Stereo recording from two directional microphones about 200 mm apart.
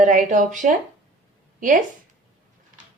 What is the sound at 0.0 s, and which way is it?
Speech, 40° right (ahead or behind).